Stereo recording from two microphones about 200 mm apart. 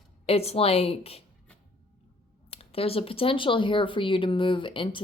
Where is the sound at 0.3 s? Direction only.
30° left (ahead or behind).